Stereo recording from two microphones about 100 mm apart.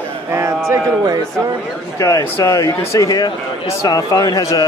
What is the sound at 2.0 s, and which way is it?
Speech, 35° left (ahead or behind).